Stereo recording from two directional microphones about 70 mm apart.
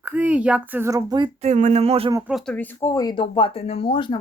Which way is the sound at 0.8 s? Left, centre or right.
Right.